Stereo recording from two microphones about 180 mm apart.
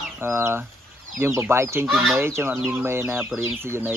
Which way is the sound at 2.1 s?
15° right (ahead or behind).